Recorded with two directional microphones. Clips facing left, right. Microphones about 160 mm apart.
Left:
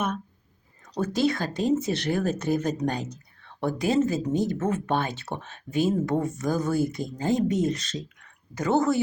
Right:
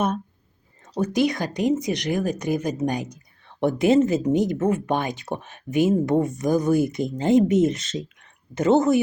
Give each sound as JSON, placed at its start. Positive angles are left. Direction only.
{"t": 0.9, "sound": "speech", "side_deg": -20}